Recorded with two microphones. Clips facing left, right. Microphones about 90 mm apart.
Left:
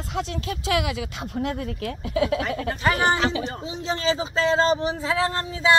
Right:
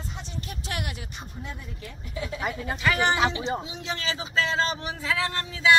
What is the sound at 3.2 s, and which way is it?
Speech, 15° right (ahead or behind).